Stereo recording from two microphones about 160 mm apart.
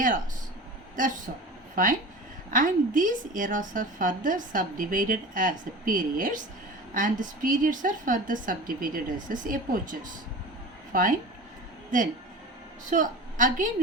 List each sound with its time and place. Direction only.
1.0 s a woman's voice: 55° right (ahead or behind)
10.9 s a woman's voice: 60° right (ahead or behind)
12.8 s a woman's voice: 50° right (ahead or behind)